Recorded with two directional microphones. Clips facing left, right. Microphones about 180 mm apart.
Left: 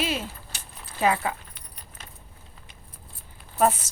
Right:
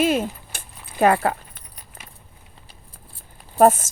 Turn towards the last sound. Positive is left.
turn(degrees=-50)  # may be behind; listen again after turning